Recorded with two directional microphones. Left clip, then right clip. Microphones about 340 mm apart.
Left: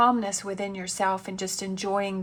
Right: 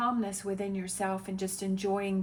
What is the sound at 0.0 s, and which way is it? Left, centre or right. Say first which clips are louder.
A woman's voice: left 9 dB; centre.